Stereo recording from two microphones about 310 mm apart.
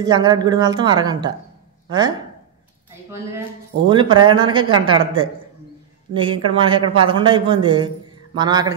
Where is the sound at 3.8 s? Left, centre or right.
Centre.